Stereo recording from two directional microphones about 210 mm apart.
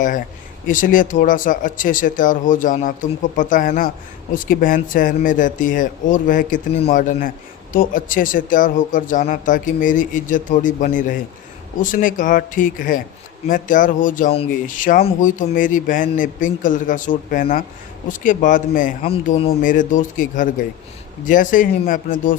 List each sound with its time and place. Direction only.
0.7 s speech: 40° left (ahead or behind)